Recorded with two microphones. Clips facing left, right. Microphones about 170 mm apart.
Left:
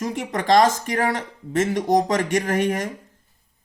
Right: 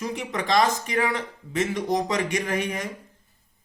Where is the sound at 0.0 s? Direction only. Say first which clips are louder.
Left 3 dB; 45° left (ahead or behind).